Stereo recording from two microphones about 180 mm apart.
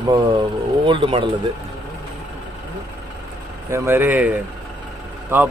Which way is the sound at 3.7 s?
15° right (ahead or behind).